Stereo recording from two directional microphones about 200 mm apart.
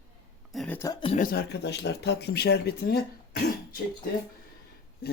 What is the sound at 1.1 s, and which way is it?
Speech, 45° left (ahead or behind).